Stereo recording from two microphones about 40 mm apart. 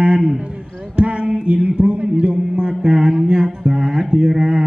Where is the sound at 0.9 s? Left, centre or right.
Right.